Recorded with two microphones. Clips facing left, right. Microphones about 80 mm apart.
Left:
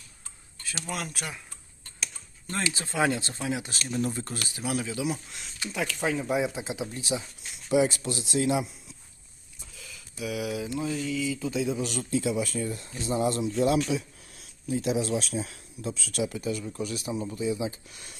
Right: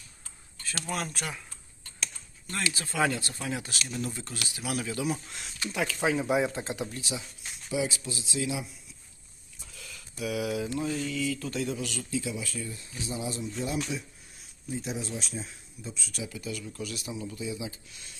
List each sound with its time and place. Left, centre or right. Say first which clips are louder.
0.9 s speech: right 2 dB; centre
2.5 s speech: left 2 dB; left
3.8 s speech: left 5 dB; left
4.6 s speech: left 1 dB; centre
5.7 s speech: right 1 dB; centre
7.0 s speech: left 5 dB; left
7.7 s speech: left 7 dB; left
9.6 s a sound: even; centre
10.8 s speech: left 1 dB; centre
11.8 s speech: left 5 dB; left
13.1 s speech: left 8 dB; left
16.3 s speech: left 6 dB; left